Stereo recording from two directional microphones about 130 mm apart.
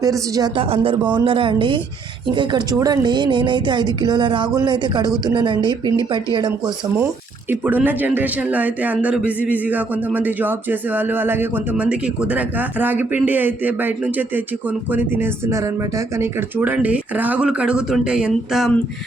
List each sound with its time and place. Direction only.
0.0 s speech: 30° right (ahead or behind)
0.5 s speech: 45° right (ahead or behind)
7.6 s speech: 10° right (ahead or behind)